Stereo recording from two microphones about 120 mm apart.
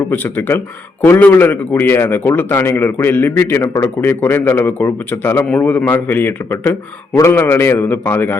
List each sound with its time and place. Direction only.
0.0 s a man's voice: 15° left (ahead or behind)